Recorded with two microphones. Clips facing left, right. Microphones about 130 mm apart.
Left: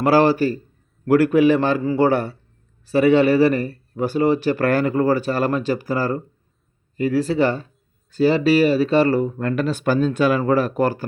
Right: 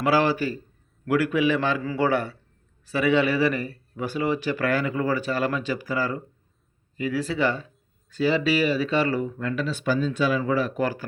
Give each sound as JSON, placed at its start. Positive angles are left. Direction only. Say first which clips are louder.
{"t": 0.0, "sound": "speech", "louder": "left 6 dB", "side_deg": 35}